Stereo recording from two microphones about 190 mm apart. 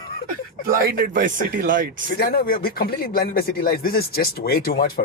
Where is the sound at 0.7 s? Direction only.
50° right (ahead or behind).